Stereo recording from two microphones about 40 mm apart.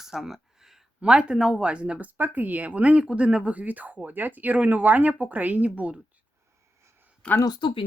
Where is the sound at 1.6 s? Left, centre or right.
Right.